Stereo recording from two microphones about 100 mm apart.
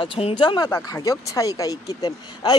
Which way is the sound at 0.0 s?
60° left (ahead or behind).